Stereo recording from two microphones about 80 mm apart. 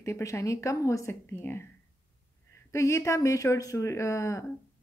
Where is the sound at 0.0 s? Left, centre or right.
Left.